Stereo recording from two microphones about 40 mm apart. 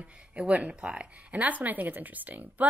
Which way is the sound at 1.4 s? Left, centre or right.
Right.